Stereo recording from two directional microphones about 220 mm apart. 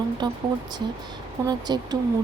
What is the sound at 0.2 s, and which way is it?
Speech, 20° right (ahead or behind).